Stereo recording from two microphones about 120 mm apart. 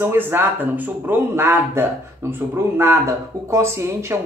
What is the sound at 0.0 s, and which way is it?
A man's voice, 20° right (ahead or behind).